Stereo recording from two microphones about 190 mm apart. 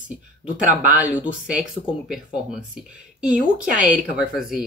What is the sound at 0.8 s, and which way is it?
Speech, 10° right (ahead or behind).